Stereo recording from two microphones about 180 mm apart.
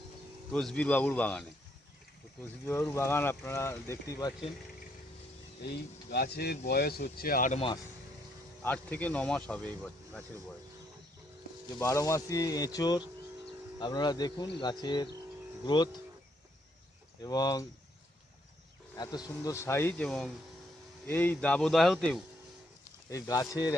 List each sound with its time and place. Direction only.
0.5 s speech: 5° left (ahead or behind)
2.6 s speech: 15° left (ahead or behind)
5.6 s speech: 65° left (ahead or behind); by 7.6 s 50° left (ahead or behind)
8.6 s speech: 10° left (ahead or behind)
11.8 s speech: 15° left (ahead or behind)
17.2 s speech: 20° left (ahead or behind)
18.9 s speech: 20° left (ahead or behind); by 22.2 s centre (ahead or behind)
23.0 s speech: 20° left (ahead or behind)